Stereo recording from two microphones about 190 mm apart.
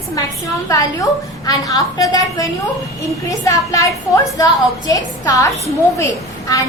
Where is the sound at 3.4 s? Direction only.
15° left (ahead or behind).